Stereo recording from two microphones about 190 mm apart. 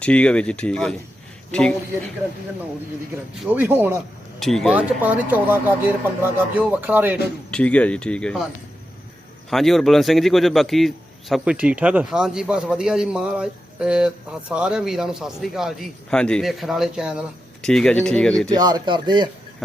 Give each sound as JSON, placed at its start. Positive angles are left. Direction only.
{"t": 0.0, "sound": "a man's voice", "side_deg": 5}
{"t": 3.4, "sound": "speech", "side_deg": -10}
{"t": 4.4, "sound": "a man's voice", "side_deg": 0}
{"t": 7.5, "sound": "a man's voice", "side_deg": 5}
{"t": 9.5, "sound": "a man's voice", "side_deg": 0}
{"t": 18.5, "sound": "speech", "side_deg": -20}